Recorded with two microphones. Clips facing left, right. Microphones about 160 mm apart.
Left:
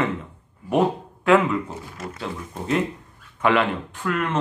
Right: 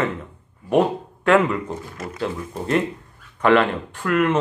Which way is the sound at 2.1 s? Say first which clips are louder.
Right 7 dB; centre (ahead or behind).